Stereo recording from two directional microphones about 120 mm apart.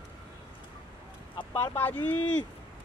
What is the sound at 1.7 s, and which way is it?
Speech, 15° left (ahead or behind).